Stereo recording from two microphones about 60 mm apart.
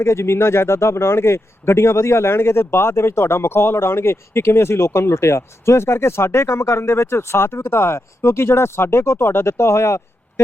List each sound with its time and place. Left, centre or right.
0.0 s a man's voice: left